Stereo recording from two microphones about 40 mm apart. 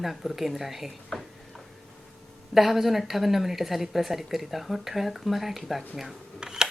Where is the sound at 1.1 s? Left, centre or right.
Centre.